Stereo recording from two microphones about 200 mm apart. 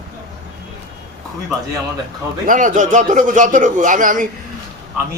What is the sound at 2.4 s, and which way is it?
Speech, 40° right (ahead or behind).